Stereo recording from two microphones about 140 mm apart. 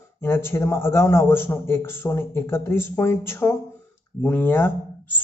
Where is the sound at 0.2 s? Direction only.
15° left (ahead or behind).